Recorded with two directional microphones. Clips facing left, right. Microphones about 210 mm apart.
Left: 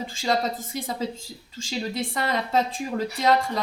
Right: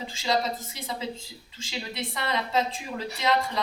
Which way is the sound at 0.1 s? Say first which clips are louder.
Left 1 dB; 50° left (ahead or behind).